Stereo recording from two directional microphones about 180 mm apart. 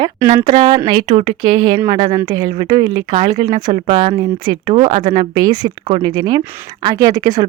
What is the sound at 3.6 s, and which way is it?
Speech, 25° right (ahead or behind).